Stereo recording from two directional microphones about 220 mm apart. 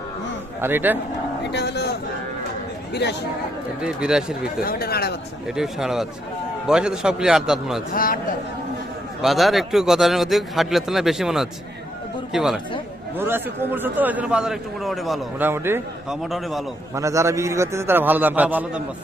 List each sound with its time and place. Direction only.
0.6 s a man's voice: 10° right (ahead or behind)
1.5 s a sound: 50° left (ahead or behind)
2.9 s speech: 50° left (ahead or behind)
3.8 s a man's voice: 5° right (ahead or behind)
4.6 s speech: 45° left (ahead or behind)
5.5 s a man's voice: centre (ahead or behind)
7.9 s a man's voice: 40° left (ahead or behind)
9.2 s a man's voice: centre (ahead or behind)
16.9 s a man's voice: 15° right (ahead or behind)